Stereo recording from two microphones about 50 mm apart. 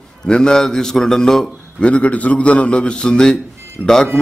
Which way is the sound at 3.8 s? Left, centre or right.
Left.